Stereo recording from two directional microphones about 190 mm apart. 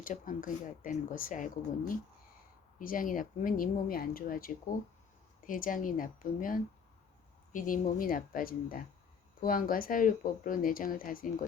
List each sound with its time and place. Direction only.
0.0 s speech: 45° left (ahead or behind)
2.7 s speech: 45° left (ahead or behind)